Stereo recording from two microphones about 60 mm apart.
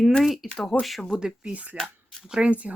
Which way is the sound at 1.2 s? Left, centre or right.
Centre.